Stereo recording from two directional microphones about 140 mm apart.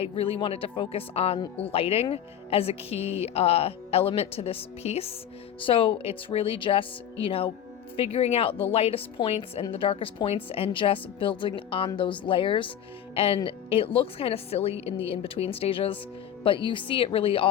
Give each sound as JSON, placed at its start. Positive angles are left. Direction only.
{"t": 0.0, "sound": "speech", "side_deg": 40}